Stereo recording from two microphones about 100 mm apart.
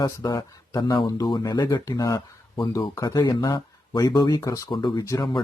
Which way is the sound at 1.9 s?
35° left (ahead or behind).